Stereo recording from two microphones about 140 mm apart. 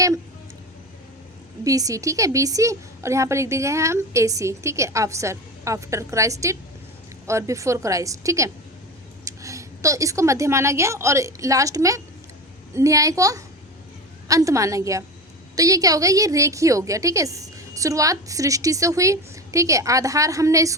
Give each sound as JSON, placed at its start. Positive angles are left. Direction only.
{"t": 1.6, "sound": "a woman's voice", "side_deg": -25}